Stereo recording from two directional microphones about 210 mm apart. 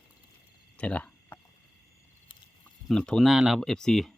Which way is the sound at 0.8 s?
5° left (ahead or behind).